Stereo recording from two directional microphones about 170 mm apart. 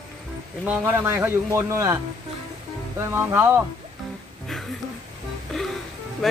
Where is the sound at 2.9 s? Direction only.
15° right (ahead or behind).